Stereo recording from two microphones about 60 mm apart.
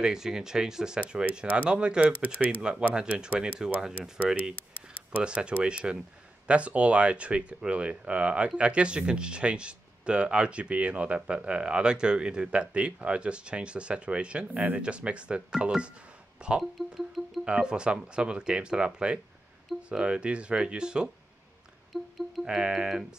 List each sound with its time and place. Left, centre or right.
0.0 s speech: centre
5.1 s speech: centre
16.7 s speech: centre
17.5 s speech: centre
21.9 s speech: centre
22.4 s speech: centre